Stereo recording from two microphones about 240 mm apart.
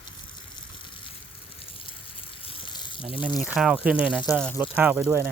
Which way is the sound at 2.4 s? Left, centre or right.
Left.